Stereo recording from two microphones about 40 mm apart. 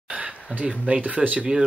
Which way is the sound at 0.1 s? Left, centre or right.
Right.